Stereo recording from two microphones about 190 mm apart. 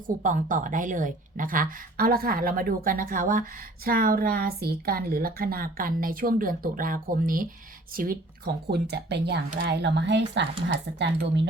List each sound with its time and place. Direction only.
0.2 s a woman's voice: 45° right (ahead or behind); by 11.4 s 65° right (ahead or behind)